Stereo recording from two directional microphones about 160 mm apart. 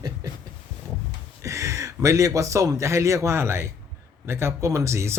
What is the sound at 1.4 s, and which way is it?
A man's voice, 20° right (ahead or behind).